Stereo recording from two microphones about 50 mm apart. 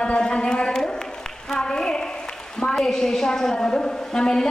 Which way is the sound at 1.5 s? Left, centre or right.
Centre.